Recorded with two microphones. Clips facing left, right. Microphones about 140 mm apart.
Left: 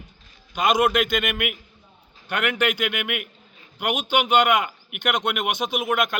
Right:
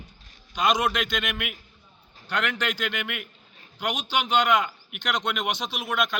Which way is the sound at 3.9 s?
55° left (ahead or behind).